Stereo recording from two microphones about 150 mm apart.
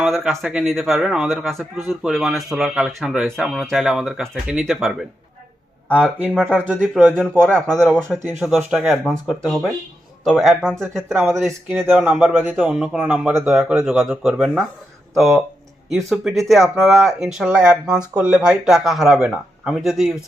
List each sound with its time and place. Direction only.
0.0 s a man's voice: 5° right (ahead or behind)
6.4 s speech: 15° right (ahead or behind)
6.7 s a man's voice: centre (ahead or behind)
8.3 s a man's voice: 5° right (ahead or behind)
11.4 s a man's voice: 15° right (ahead or behind)